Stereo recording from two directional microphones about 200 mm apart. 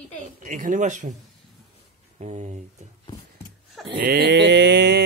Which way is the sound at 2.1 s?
35° right (ahead or behind).